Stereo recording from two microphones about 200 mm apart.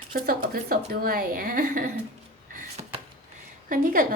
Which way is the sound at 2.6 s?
30° right (ahead or behind).